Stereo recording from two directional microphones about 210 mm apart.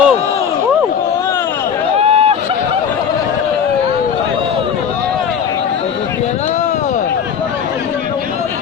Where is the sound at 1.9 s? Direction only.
30° right (ahead or behind).